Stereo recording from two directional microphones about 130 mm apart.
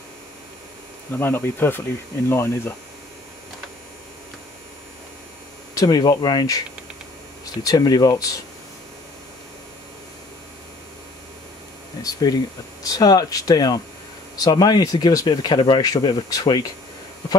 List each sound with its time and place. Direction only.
1.1 s speech: 15° left (ahead or behind)
5.8 s speech: 30° left (ahead or behind)
7.6 s speech: 30° left (ahead or behind)
12.0 s speech: 30° left (ahead or behind)